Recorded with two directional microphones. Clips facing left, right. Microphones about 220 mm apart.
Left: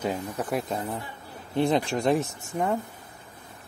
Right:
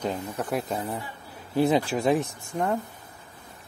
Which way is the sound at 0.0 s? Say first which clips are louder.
Even; 5° left (ahead or behind).